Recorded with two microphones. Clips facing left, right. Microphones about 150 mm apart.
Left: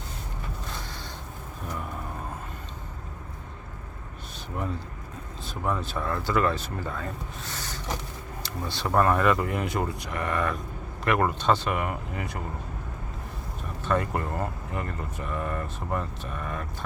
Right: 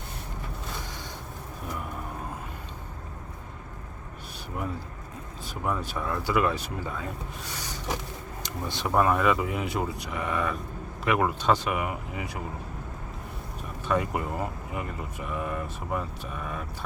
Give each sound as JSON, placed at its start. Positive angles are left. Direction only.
{"t": 4.5, "sound": "speech", "side_deg": -5}
{"t": 8.9, "sound": "speech", "side_deg": -5}
{"t": 13.8, "sound": "speech", "side_deg": -10}